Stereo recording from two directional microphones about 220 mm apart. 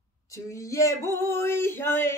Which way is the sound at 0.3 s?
15° left (ahead or behind).